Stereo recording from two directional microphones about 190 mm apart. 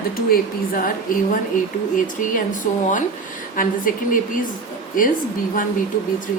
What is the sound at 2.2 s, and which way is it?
A woman's voice, 45° left (ahead or behind).